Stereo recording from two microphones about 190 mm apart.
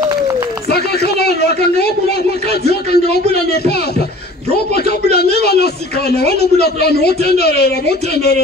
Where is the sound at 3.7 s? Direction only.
60° left (ahead or behind).